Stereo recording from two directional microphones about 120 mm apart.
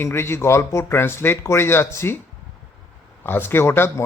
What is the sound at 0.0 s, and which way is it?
Speech, 20° left (ahead or behind).